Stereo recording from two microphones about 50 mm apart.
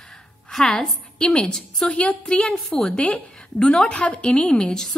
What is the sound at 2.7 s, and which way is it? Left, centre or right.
A woman's voice, centre.